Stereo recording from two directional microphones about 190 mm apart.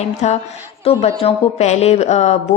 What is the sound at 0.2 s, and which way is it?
Speech, 35° left (ahead or behind).